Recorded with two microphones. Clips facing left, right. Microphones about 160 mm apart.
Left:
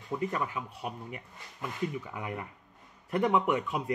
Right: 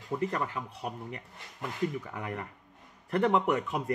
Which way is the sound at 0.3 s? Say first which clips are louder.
Even; 5° left (ahead or behind).